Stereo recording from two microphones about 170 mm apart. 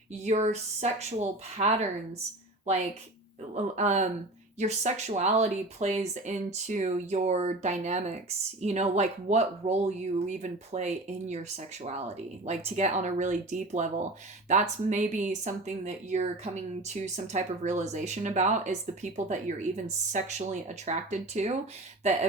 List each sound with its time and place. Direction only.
0.3 s speech: 40° right (ahead or behind)
3.5 s speech: 45° right (ahead or behind)